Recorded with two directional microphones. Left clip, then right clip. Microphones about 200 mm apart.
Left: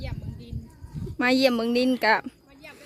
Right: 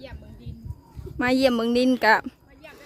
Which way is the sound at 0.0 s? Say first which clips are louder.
Left 2 dB; 35° left (ahead or behind).